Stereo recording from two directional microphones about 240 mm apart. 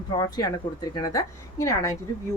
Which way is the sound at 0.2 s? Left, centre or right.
Centre.